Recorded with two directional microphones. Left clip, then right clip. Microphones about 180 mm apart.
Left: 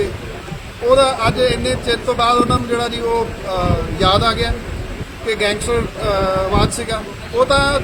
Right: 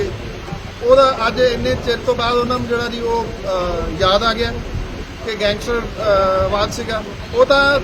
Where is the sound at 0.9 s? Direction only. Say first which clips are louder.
Right 1 dB; centre (ahead or behind).